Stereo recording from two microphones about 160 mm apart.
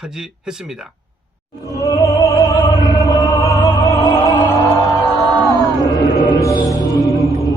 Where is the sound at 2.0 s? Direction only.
20° left (ahead or behind).